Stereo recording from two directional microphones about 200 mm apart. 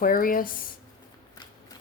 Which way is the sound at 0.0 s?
45° left (ahead or behind).